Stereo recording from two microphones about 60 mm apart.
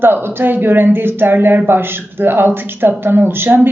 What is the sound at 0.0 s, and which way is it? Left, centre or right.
Speech, right.